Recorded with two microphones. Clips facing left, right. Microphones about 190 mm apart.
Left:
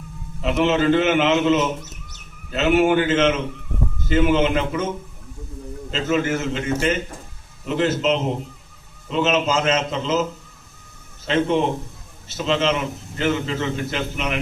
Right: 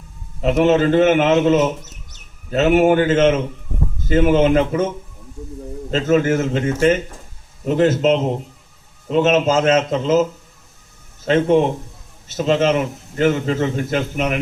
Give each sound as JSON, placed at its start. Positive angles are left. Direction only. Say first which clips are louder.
{"t": 0.4, "sound": "a man's voice", "louder": "right 4 dB", "side_deg": -45}
{"t": 5.9, "sound": "a man's voice", "louder": "right 5 dB", "side_deg": -45}
{"t": 11.3, "sound": "a man's voice", "louder": "right 5 dB", "side_deg": -45}